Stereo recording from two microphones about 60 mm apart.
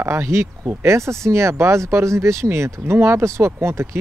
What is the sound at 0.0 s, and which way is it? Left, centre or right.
Speech, right.